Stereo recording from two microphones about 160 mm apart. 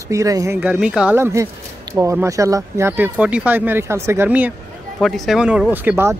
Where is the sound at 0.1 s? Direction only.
20° right (ahead or behind).